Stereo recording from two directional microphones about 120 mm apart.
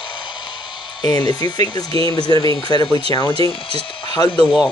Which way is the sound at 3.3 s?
55° right (ahead or behind).